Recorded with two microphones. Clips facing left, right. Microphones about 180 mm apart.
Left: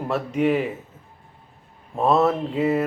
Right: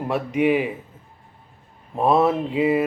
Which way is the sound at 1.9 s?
10° right (ahead or behind).